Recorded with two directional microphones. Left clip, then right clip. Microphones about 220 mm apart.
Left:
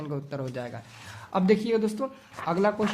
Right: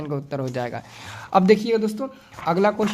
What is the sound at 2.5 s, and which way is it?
Speech, 30° right (ahead or behind).